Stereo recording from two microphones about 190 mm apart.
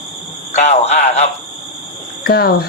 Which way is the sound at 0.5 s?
35° left (ahead or behind).